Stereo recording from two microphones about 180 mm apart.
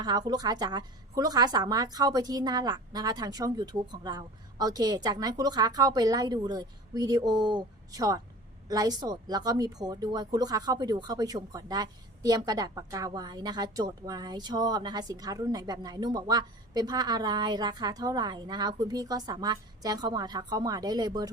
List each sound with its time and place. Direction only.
0.0 s a woman's voice: 20° right (ahead or behind)